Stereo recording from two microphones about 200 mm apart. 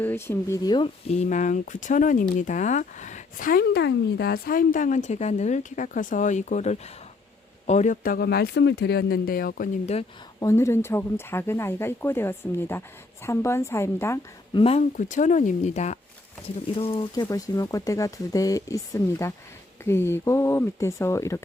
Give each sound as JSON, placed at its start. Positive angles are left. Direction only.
{"t": 0.0, "sound": "speech", "side_deg": 10}
{"t": 9.8, "sound": "speech", "side_deg": 30}
{"t": 10.4, "sound": "speech", "side_deg": 15}
{"t": 14.5, "sound": "speech", "side_deg": 30}